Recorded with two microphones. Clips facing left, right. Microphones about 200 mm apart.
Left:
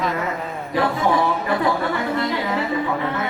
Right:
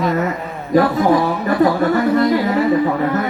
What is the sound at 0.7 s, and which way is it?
Speech, 45° right (ahead or behind).